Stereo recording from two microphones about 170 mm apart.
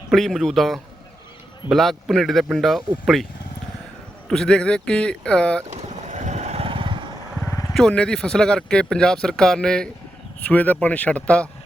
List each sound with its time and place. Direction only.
0.1 s speech: centre (ahead or behind)
4.3 s speech: 5° left (ahead or behind)
5.6 s vehicle: 45° right (ahead or behind)
7.7 s speech: 5° left (ahead or behind)